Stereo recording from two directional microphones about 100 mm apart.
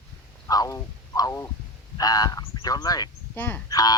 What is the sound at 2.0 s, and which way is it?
Speech, 40° left (ahead or behind).